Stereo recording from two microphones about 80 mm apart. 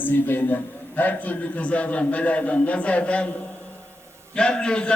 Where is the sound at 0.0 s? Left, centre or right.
Left.